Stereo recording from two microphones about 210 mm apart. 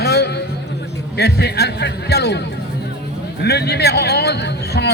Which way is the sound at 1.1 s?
50° left (ahead or behind).